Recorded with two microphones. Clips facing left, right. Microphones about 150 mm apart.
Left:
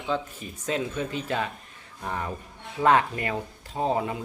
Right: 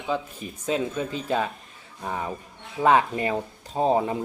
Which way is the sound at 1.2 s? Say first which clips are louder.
Right 3 dB; 15° right (ahead or behind).